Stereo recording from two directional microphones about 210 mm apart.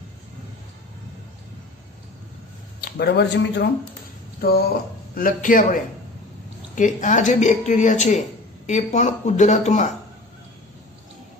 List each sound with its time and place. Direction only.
2.8 s a man's voice: 55° left (ahead or behind); by 9.9 s 35° left (ahead or behind)